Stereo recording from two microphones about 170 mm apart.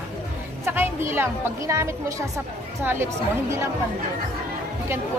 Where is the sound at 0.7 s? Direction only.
15° right (ahead or behind).